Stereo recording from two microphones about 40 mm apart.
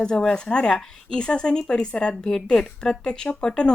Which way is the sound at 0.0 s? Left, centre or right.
Centre.